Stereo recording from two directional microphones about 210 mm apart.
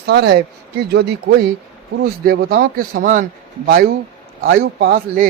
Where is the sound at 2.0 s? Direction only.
45° right (ahead or behind).